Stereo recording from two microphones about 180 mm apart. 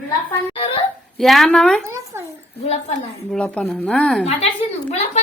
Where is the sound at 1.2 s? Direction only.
Centre (ahead or behind).